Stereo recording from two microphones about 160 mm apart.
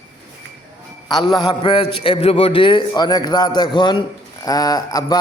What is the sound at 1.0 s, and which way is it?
A man's voice, 30° left (ahead or behind).